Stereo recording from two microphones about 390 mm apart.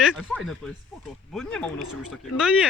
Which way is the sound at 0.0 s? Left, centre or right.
Centre.